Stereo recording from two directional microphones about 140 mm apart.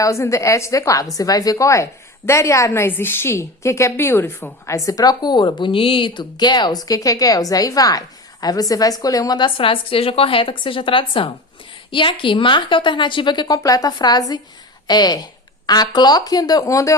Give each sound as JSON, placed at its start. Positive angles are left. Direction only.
{"t": 0.0, "sound": "a woman's voice", "side_deg": 20}